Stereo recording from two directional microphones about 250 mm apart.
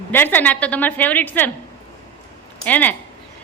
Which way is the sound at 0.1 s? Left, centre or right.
Centre.